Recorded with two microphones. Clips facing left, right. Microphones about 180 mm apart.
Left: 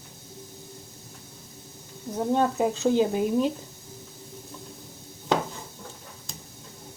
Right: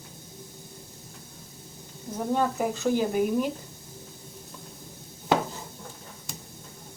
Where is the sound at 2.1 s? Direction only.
20° left (ahead or behind).